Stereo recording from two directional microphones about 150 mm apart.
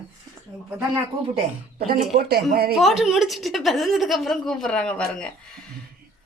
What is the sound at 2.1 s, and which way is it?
Speech, 90° right.